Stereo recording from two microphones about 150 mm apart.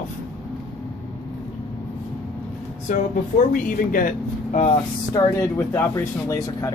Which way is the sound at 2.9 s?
55° left (ahead or behind).